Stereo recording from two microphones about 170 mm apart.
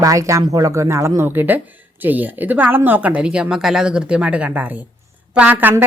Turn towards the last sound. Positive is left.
turn(degrees=-10)  # may be behind; listen again after turning